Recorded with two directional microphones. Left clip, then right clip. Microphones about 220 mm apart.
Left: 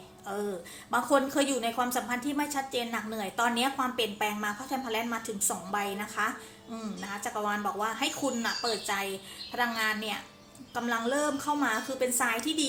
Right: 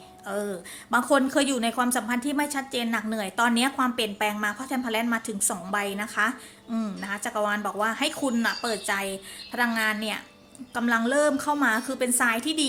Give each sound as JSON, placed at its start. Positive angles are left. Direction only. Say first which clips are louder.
{"t": 0.3, "sound": "a woman's voice", "louder": "right 4 dB", "side_deg": -40}